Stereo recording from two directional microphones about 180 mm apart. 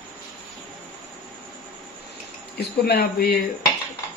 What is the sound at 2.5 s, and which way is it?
Speech, 65° left (ahead or behind).